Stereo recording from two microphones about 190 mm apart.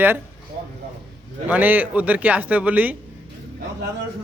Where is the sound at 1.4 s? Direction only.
10° right (ahead or behind).